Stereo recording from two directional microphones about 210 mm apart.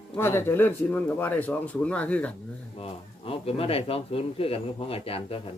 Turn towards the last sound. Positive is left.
turn(degrees=25)  # may be behind; listen again after turning